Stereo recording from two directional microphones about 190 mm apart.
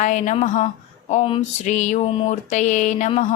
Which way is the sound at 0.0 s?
40° left (ahead or behind).